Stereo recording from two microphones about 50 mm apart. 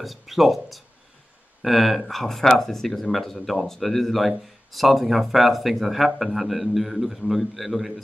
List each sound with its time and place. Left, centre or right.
0.0 s speech: centre